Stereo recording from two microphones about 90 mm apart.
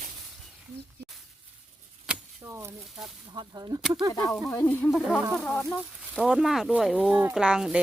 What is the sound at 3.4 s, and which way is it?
Speech, 50° right (ahead or behind).